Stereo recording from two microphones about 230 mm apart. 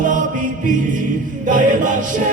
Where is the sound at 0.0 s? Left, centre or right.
Right.